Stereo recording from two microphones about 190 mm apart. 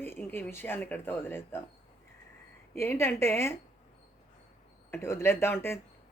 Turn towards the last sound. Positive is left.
turn(degrees=15)  # may be behind; listen again after turning